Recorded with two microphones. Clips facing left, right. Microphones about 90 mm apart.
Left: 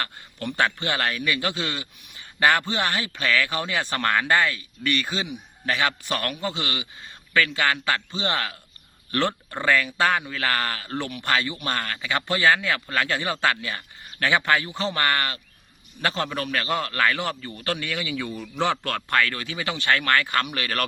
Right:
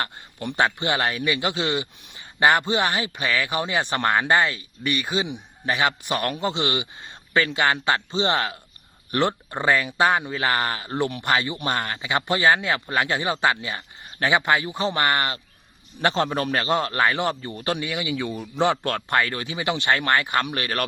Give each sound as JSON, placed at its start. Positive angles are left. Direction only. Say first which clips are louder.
{"t": 0.0, "sound": "a man's voice", "louder": "right 1 dB", "side_deg": -20}